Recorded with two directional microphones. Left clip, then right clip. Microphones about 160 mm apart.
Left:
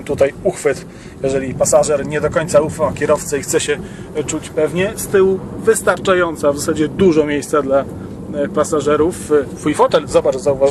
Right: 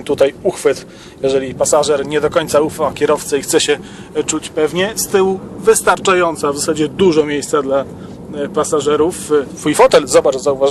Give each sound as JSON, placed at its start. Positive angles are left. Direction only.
{"t": 0.2, "sound": "speech", "side_deg": -20}
{"t": 3.5, "sound": "speech", "side_deg": -40}
{"t": 9.6, "sound": "speech", "side_deg": -55}
{"t": 10.2, "sound": "a man's voice", "side_deg": -15}